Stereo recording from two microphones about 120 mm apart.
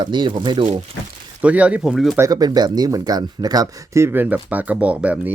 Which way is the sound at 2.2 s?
30° right (ahead or behind).